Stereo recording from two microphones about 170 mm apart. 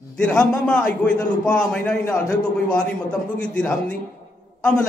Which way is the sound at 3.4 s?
5° left (ahead or behind).